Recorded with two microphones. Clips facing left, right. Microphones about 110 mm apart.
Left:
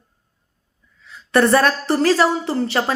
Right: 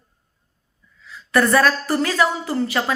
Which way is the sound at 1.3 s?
30° left (ahead or behind).